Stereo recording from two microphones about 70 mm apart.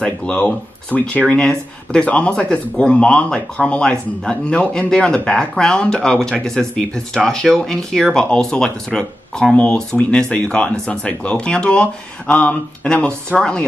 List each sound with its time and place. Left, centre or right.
0.0 s speech: centre